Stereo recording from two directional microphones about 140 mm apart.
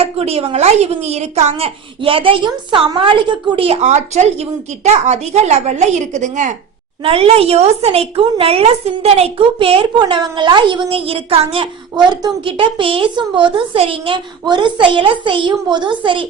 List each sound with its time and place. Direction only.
0.0 s a woman's voice: 45° right (ahead or behind)
7.0 s speech: 45° right (ahead or behind)